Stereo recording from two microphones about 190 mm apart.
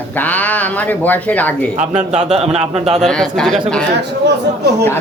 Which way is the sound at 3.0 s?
Centre (ahead or behind).